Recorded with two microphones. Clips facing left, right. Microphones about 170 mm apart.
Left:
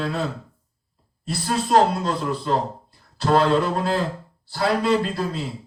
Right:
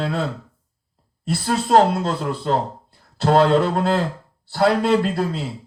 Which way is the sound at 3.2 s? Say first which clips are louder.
Right 3 dB; 55° right (ahead or behind).